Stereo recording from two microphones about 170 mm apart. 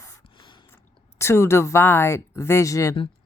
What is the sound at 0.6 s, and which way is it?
Speech, 15° left (ahead or behind).